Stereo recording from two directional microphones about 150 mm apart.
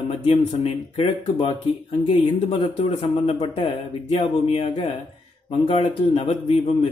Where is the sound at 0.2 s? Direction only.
40° left (ahead or behind).